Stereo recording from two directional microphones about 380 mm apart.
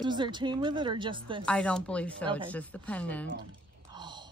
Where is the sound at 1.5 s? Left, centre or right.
Centre.